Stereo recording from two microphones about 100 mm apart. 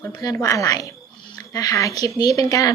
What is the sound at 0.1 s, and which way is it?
A woman's voice, 40° left (ahead or behind).